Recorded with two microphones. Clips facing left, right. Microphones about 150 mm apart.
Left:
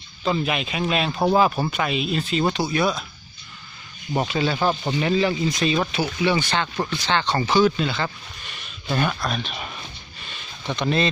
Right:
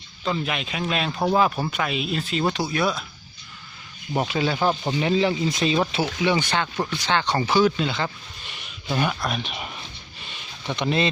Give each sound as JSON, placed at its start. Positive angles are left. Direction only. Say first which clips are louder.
{"t": 0.3, "sound": "speech", "louder": "left 3 dB", "side_deg": 10}
{"t": 4.1, "sound": "speech", "louder": "left 1 dB", "side_deg": -5}
{"t": 10.8, "sound": "speech", "louder": "left 1 dB", "side_deg": -20}